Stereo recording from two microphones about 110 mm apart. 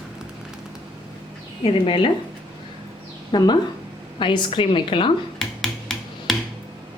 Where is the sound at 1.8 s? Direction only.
50° left (ahead or behind).